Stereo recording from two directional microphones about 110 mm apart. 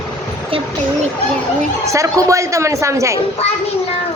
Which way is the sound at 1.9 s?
30° right (ahead or behind).